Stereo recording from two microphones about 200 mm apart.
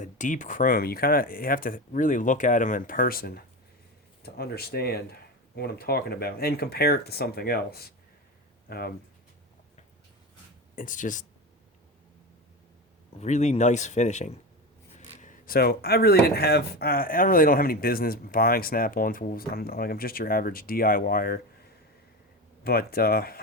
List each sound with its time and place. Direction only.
0.0 s speech: 40° left (ahead or behind)
10.8 s speech: 40° left (ahead or behind)
13.1 s speech: 35° left (ahead or behind)
22.6 s speech: 50° left (ahead or behind)